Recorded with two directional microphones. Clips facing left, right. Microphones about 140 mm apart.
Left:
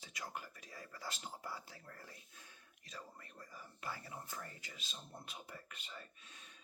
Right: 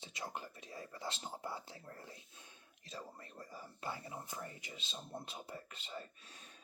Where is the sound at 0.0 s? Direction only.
25° right (ahead or behind).